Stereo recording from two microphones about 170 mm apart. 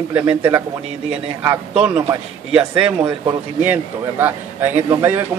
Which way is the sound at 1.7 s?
5° right (ahead or behind).